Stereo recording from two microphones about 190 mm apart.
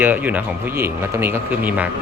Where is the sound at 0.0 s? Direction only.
10° right (ahead or behind).